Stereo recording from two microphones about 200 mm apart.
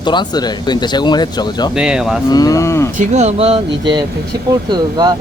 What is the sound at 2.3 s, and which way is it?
Speech, 20° left (ahead or behind).